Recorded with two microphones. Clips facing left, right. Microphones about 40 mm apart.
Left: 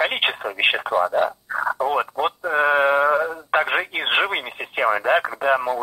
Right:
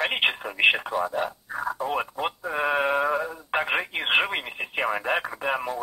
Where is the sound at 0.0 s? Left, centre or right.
Centre.